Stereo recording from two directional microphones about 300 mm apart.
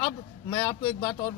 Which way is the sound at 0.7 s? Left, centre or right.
Centre.